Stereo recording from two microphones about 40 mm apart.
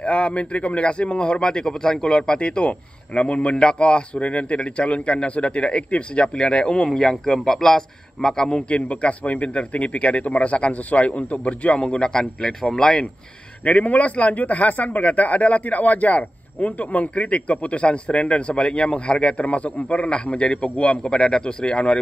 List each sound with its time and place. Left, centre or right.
0.0 s a man's voice: left
13.7 s speech: left